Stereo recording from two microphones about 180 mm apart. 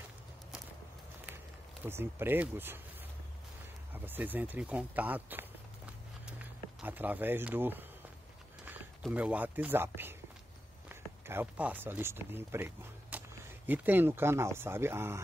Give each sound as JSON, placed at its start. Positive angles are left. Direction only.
{"t": 1.9, "sound": "speech", "side_deg": -15}
{"t": 3.9, "sound": "speech", "side_deg": -10}
{"t": 9.0, "sound": "speech", "side_deg": -5}